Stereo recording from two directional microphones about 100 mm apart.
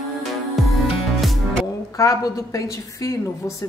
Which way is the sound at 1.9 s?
35° left (ahead or behind).